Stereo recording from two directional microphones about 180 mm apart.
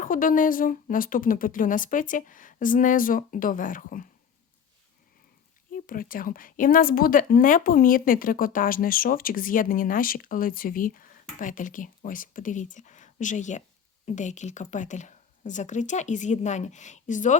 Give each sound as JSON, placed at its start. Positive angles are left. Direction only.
{"t": 0.0, "sound": "a woman's voice", "side_deg": 50}
{"t": 5.8, "sound": "a woman's voice", "side_deg": 50}